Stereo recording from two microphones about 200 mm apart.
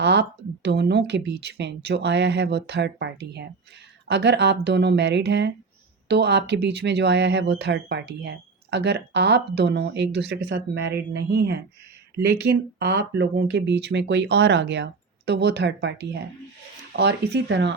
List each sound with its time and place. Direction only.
0.0 s speech: 60° right (ahead or behind)